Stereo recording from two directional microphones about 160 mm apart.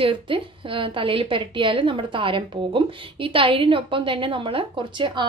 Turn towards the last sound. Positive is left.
turn(degrees=-30)  # may be behind; listen again after turning